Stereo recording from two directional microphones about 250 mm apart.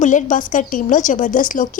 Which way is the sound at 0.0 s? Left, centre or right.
Left.